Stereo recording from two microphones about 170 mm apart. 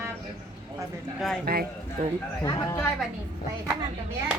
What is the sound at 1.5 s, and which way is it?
Speech, 65° right (ahead or behind).